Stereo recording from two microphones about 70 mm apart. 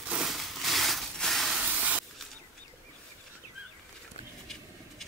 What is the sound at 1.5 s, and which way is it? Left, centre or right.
Spray, centre.